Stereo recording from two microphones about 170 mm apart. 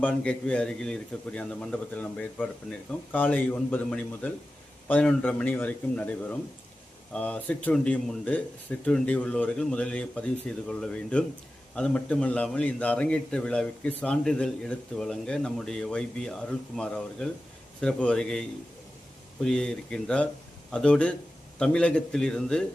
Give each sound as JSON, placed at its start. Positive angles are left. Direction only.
{"t": 0.0, "sound": "a man's voice", "side_deg": 5}